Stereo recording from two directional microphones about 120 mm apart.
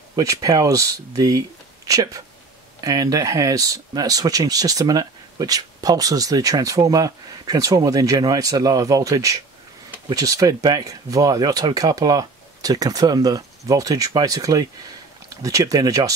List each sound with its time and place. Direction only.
0.1 s speech: 30° right (ahead or behind)